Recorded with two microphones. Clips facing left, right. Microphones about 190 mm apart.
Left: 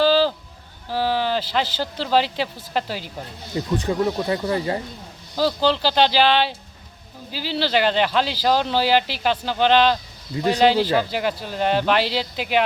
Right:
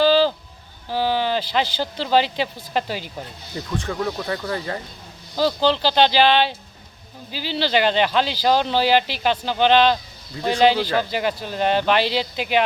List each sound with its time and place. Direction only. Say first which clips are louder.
0.0 s sheep: right 1 dB; 5° left (ahead or behind)
0.9 s speech: right 1 dB; 5° left (ahead or behind)
3.8 s speech: left 3 dB; 15° left (ahead or behind)
5.4 s speech: right 1 dB; 5° left (ahead or behind)